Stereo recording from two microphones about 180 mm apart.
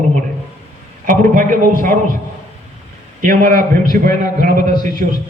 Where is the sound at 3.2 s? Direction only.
50° right (ahead or behind).